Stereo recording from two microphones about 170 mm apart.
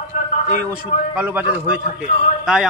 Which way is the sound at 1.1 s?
10° right (ahead or behind).